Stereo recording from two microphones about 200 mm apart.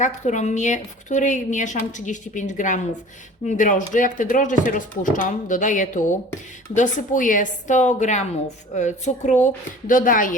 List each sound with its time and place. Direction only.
0.0 s a woman's voice: 35° left (ahead or behind)